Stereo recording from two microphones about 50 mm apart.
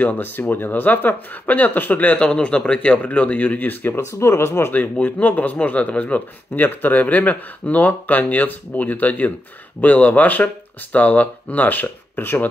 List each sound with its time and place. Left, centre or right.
0.0 s speech: left
2.2 s speech: left
3.9 s speech: left
4.7 s speech: left
6.5 s speech: left